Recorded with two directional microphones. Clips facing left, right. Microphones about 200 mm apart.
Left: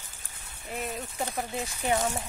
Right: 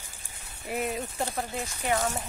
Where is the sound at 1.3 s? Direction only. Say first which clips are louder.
Even; 10° left (ahead or behind).